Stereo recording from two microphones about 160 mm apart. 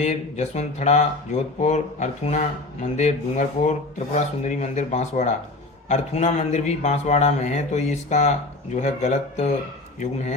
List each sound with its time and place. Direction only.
0.0 s speech: 45° left (ahead or behind)